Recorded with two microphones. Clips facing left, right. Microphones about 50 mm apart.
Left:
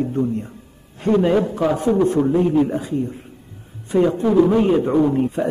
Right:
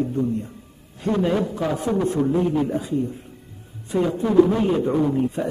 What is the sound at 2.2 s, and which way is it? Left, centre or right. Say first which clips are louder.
Speech: left 4 dB; left.